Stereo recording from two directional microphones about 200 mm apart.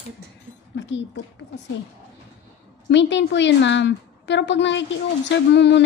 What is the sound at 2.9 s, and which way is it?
A woman's voice, 65° left (ahead or behind).